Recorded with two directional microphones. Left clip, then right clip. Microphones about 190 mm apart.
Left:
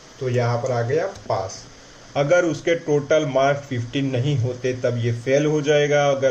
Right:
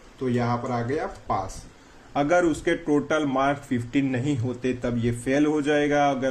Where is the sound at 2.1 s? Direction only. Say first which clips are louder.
Left 3 dB; 40° right (ahead or behind).